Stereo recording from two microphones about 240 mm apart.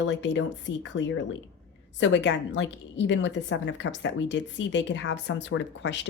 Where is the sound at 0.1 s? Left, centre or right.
Left.